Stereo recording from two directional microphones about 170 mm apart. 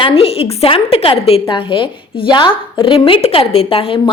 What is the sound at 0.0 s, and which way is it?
A woman's voice, 35° left (ahead or behind).